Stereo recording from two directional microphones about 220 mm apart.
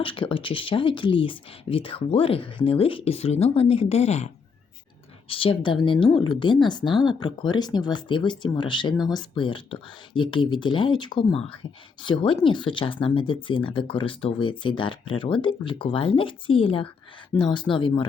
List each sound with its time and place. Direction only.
0.0 s speech: 25° left (ahead or behind)
5.3 s speech: 25° left (ahead or behind)